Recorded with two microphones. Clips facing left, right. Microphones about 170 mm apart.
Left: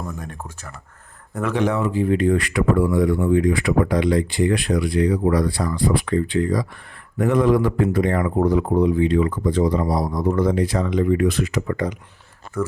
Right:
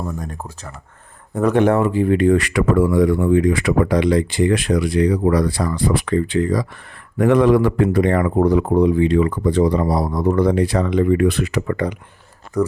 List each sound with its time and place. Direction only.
0.2 s speech: 40° right (ahead or behind)
1.5 s speech: 55° right (ahead or behind)
12.6 s speech: 35° right (ahead or behind)